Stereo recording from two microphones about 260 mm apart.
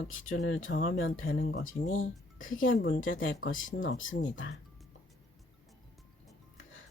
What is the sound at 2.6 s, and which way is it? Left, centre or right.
Speech, left.